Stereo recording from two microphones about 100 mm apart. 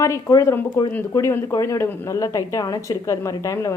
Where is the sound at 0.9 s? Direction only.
25° left (ahead or behind).